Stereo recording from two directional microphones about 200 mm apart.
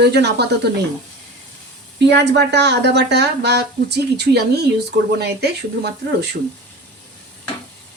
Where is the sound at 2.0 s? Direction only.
60° right (ahead or behind).